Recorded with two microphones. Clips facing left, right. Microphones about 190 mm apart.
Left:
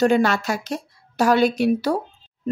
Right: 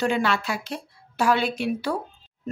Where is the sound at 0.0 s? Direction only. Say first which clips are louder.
Left 6 dB; 45° left (ahead or behind).